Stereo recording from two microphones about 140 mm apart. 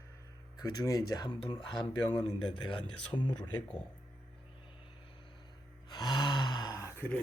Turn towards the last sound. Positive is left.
turn(degrees=25)  # may be behind; listen again after turning